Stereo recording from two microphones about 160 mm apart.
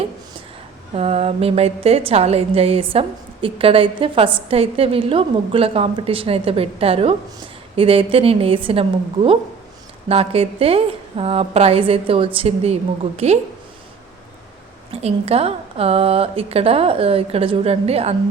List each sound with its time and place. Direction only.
0.9 s a woman's voice: 40° right (ahead or behind)
14.8 s a woman's voice: 40° right (ahead or behind)